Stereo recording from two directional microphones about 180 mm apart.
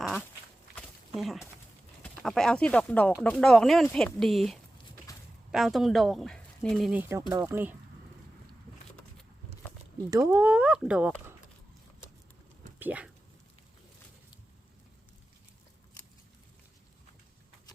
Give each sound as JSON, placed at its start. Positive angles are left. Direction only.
{"t": 0.8, "sound": "a sound", "side_deg": 0}
{"t": 2.0, "sound": "speech", "side_deg": 5}
{"t": 6.9, "sound": "speech", "side_deg": -15}
{"t": 10.1, "sound": "speech", "side_deg": -20}
{"t": 12.8, "sound": "speech", "side_deg": -10}